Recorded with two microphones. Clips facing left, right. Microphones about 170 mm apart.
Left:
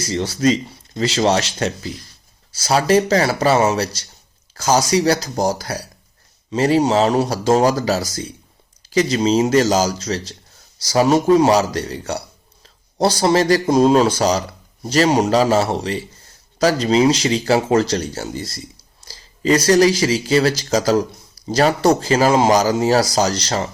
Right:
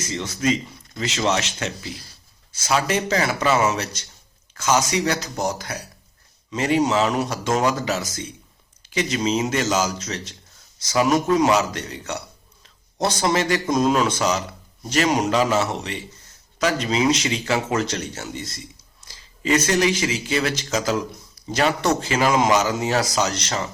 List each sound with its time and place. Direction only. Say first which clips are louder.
0.0 s speech: left 6 dB; 35° left (ahead or behind)